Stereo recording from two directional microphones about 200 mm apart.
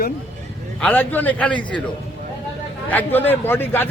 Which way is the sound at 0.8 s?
10° left (ahead or behind).